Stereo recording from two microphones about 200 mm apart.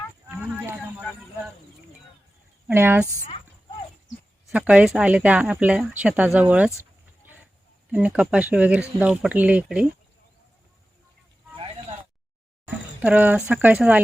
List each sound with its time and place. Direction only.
0.3 s a sound: 10° right (ahead or behind)
2.6 s speech: 10° right (ahead or behind)
4.5 s speech: 5° right (ahead or behind)
7.9 s speech: 5° right (ahead or behind)
11.5 s a sound: 25° right (ahead or behind)
12.6 s speech: 5° right (ahead or behind)